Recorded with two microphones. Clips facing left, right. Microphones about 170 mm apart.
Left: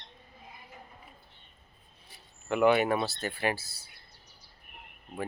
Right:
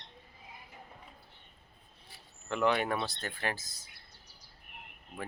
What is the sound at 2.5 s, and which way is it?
Speech, 10° left (ahead or behind).